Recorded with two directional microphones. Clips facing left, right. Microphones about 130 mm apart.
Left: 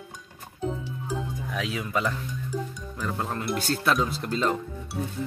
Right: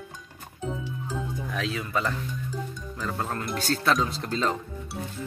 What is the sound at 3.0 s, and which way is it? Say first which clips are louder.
Speech: left 1 dB; 5° left (ahead or behind).